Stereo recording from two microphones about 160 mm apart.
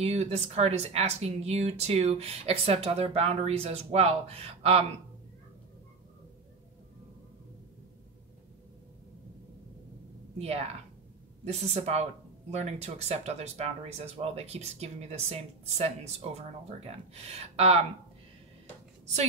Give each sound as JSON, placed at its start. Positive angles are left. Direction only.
{"t": 0.0, "sound": "speech", "side_deg": -40}
{"t": 10.4, "sound": "speech", "side_deg": -40}